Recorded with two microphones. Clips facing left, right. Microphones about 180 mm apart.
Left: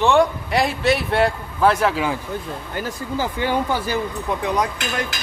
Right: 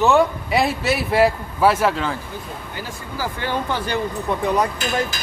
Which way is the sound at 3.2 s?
15° left (ahead or behind).